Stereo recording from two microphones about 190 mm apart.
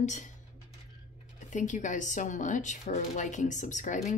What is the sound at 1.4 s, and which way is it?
Speech, 40° left (ahead or behind).